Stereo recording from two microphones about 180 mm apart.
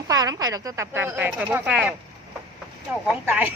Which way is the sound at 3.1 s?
10° right (ahead or behind).